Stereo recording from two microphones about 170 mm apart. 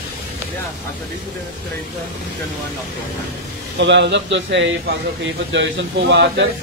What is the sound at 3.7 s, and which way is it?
A man's voice, 90° right.